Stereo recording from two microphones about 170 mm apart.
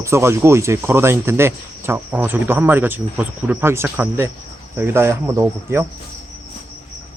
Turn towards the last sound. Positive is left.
turn(degrees=-15)  # may be behind; listen again after turning